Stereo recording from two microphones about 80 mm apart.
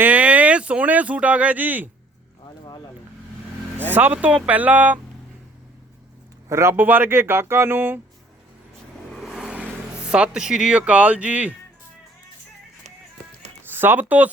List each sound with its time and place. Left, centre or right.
0.0 s speech: centre
3.9 s speech: right
6.5 s speech: right
9.2 s vehicle: centre
10.1 s speech: centre
13.7 s speech: right